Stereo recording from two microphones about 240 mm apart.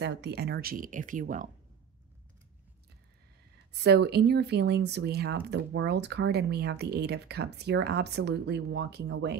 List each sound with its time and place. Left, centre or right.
0.0 s speech: right
3.8 s speech: right